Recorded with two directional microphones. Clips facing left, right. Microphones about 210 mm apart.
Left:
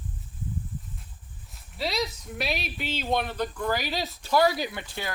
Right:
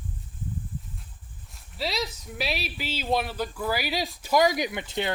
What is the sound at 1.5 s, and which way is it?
Speech, centre (ahead or behind).